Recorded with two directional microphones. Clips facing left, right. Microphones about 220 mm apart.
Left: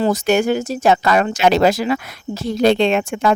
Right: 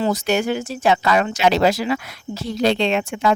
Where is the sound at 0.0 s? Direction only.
50° left (ahead or behind).